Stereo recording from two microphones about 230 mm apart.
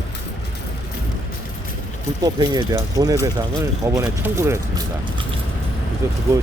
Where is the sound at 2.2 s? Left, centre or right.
Centre.